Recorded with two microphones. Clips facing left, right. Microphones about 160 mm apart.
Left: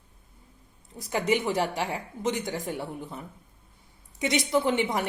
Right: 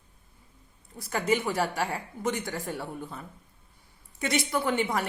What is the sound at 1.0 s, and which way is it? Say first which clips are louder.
Speech: left 1 dB; 15° left (ahead or behind).